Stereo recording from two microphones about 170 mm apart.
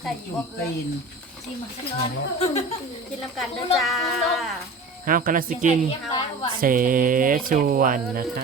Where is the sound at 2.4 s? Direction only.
40° left (ahead or behind).